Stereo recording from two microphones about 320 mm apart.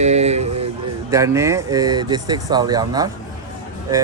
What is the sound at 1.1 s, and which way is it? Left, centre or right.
Speech, centre.